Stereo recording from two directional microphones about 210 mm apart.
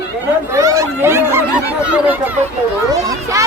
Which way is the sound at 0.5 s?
15° right (ahead or behind).